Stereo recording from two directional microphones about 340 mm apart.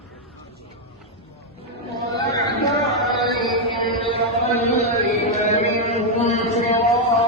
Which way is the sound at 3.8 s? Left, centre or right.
Centre.